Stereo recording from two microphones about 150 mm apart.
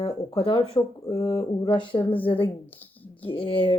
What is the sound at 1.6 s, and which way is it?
Speech, 35° left (ahead or behind).